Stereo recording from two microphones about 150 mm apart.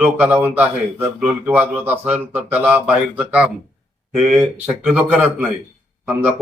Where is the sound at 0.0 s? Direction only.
10° right (ahead or behind).